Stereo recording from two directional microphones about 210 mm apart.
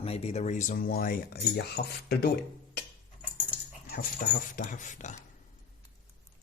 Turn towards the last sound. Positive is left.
turn(degrees=35)  # may be behind; listen again after turning